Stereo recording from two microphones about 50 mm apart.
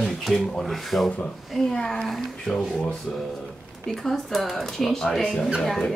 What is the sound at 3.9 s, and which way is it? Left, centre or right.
Speech, centre.